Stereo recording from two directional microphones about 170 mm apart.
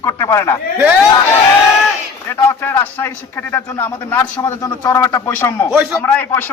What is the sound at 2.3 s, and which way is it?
A man's voice, 15° left (ahead or behind).